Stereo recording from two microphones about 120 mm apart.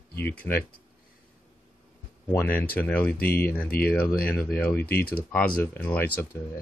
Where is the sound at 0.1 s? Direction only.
15° left (ahead or behind).